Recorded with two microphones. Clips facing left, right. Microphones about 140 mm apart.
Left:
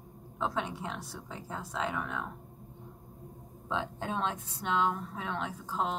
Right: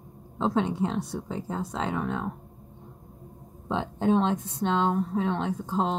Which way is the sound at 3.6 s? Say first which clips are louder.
Right 9 dB; 25° right (ahead or behind).